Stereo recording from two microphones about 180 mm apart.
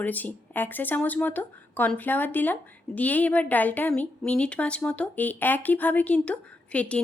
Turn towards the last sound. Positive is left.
turn(degrees=5)  # may be behind; listen again after turning